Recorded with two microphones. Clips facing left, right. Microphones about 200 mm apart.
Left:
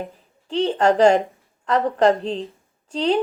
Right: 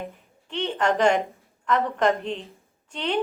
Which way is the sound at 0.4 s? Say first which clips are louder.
Left 6 dB; 35° left (ahead or behind).